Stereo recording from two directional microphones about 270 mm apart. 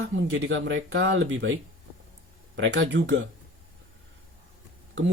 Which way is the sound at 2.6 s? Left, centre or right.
Right.